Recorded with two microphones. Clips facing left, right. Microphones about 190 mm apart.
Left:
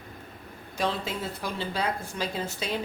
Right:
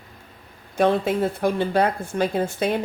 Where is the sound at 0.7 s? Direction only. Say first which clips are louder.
Right 10 dB; 55° right (ahead or behind).